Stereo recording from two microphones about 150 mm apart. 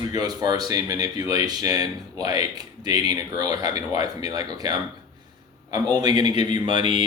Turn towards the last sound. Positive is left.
turn(degrees=-30)  # may be behind; listen again after turning